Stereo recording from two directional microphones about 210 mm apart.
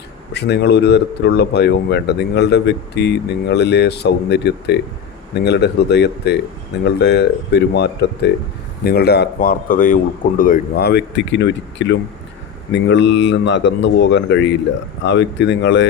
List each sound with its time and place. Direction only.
0.3 s a man's voice: 55° left (ahead or behind)